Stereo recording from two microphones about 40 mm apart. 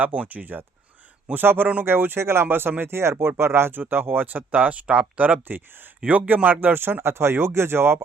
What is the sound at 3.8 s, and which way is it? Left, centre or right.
Speech, right.